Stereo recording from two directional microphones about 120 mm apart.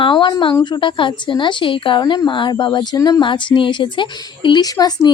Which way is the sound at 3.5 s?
45° left (ahead or behind).